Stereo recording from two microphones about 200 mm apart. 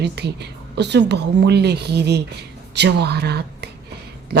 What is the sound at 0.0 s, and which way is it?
Speech, 55° right (ahead or behind).